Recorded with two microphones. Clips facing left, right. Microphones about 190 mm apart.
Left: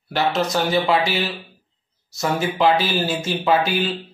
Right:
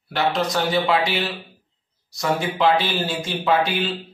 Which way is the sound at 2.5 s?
5° left (ahead or behind).